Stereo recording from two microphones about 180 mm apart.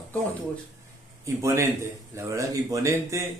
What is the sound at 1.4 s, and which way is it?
A man's voice, 15° right (ahead or behind).